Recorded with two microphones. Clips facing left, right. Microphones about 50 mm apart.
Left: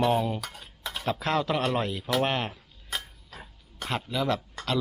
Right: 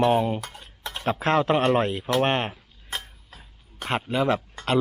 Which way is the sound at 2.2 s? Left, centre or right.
Right.